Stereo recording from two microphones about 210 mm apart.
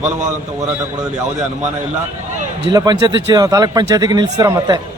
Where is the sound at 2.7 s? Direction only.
20° right (ahead or behind).